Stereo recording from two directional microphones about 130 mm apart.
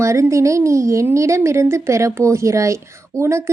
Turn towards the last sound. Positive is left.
turn(degrees=-20)  # may be behind; listen again after turning